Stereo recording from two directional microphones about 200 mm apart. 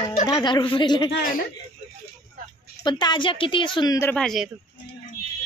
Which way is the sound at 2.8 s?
25° left (ahead or behind).